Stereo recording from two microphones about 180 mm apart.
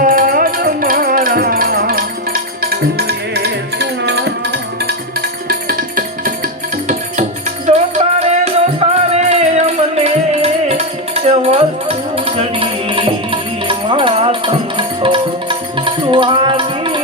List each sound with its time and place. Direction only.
0.0 s music: 50° right (ahead or behind); by 4.9 s 70° right (ahead or behind)
7.7 s music: 40° right (ahead or behind)